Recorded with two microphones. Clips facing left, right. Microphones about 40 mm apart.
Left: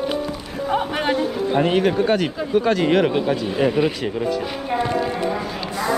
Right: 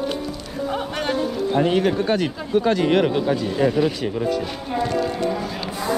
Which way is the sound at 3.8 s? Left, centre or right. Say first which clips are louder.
Left 1 dB; left.